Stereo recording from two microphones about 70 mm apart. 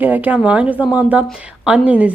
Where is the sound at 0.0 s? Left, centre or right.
Right.